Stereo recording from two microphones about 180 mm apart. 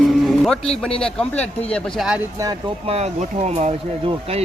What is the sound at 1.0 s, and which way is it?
Speech, 5° left (ahead or behind).